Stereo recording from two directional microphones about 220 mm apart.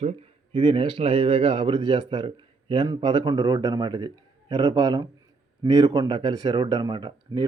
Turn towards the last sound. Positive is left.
turn(degrees=-20)  # may be behind; listen again after turning